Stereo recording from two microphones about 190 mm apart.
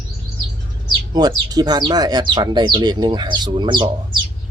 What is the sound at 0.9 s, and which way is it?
Speech, 20° right (ahead or behind).